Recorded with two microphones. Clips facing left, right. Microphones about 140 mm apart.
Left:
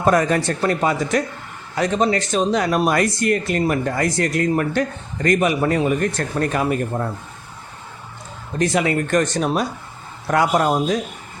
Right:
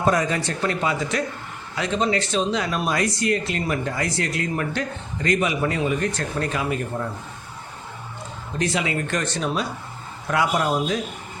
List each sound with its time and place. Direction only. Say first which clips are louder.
0.0 s speech: left 4 dB; 55° left (ahead or behind)
8.5 s speech: left 5 dB; 45° left (ahead or behind)